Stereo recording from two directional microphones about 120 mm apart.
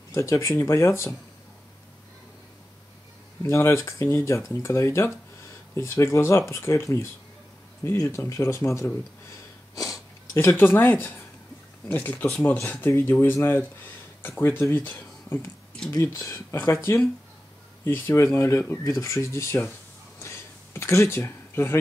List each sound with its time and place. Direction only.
0.1 s speech: 25° left (ahead or behind)
3.4 s speech: 25° left (ahead or behind); by 12.8 s 5° left (ahead or behind)
12.8 s speech: 20° left (ahead or behind)
20.2 s a sound: 20° left (ahead or behind)